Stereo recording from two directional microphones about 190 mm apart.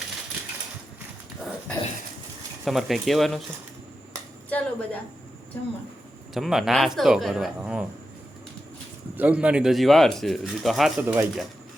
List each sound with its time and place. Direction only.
2.6 s speech: centre (ahead or behind)
4.4 s speech: 5° left (ahead or behind)
6.3 s speech: centre (ahead or behind)
9.1 s speech: 10° right (ahead or behind)